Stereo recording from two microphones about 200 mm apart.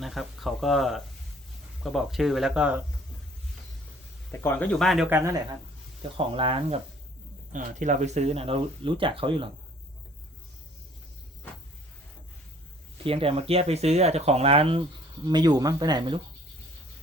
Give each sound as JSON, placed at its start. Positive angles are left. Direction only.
{"t": 0.0, "sound": "speech", "side_deg": 0}
{"t": 4.3, "sound": "speech", "side_deg": 10}
{"t": 5.0, "sound": "speech", "side_deg": -10}
{"t": 6.0, "sound": "speech", "side_deg": -25}
{"t": 7.5, "sound": "speech", "side_deg": -40}
{"t": 13.1, "sound": "speech", "side_deg": -30}